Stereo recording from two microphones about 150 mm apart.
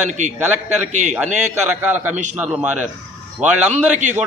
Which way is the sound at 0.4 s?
10° right (ahead or behind).